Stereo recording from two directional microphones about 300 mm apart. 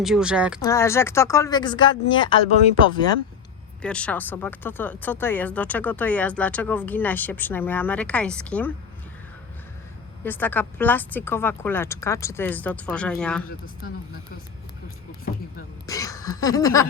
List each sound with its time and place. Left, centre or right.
0.0 s speech: centre
0.6 s speech: centre
3.8 s speech: centre
10.2 s speech: centre
13.8 s speech: left
15.9 s a sound: centre